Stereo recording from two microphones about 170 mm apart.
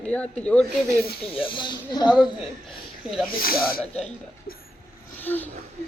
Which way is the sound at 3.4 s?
60° left (ahead or behind).